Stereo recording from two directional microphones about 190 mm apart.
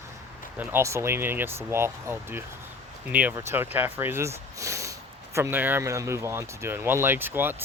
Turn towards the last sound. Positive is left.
turn(degrees=-10)  # may be behind; listen again after turning